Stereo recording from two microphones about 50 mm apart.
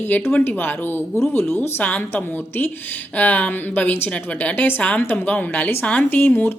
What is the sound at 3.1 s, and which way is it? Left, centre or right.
Speech, left.